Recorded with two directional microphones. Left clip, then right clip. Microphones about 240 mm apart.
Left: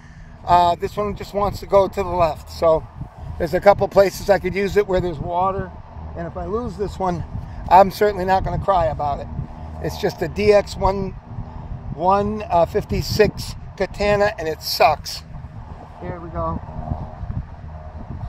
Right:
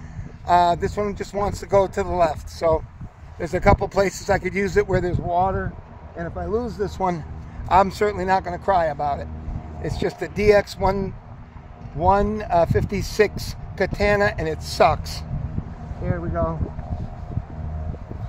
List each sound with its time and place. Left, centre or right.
0.5 s speech: centre
3.3 s speech: centre
7.6 s speech: centre
9.8 s speech: centre